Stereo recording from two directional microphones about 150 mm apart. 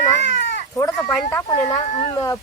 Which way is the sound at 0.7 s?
20° left (ahead or behind).